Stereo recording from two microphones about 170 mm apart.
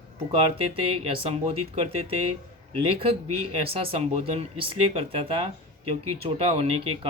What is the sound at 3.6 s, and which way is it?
Speech, 35° right (ahead or behind).